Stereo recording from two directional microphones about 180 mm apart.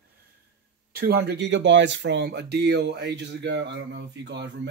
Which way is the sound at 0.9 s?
60° right (ahead or behind).